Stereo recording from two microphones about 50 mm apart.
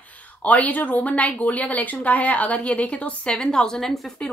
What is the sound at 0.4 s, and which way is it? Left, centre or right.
A woman's voice, left.